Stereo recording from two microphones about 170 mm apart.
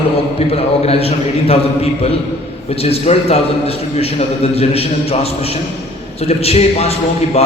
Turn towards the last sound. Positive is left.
turn(degrees=35)  # may be behind; listen again after turning